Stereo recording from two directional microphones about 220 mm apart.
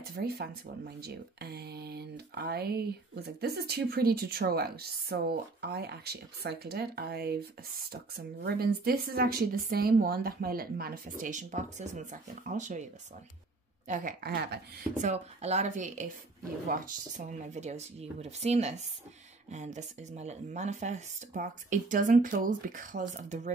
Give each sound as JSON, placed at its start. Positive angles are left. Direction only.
{"t": 0.0, "sound": "speech", "side_deg": -45}
{"t": 13.8, "sound": "speech", "side_deg": -40}
{"t": 15.0, "sound": "speech", "side_deg": -30}
{"t": 17.3, "sound": "speech", "side_deg": -30}